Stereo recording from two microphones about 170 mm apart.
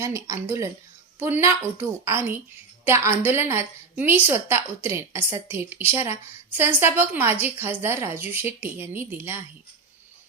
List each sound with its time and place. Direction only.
0.0 s a woman's voice: 15° right (ahead or behind)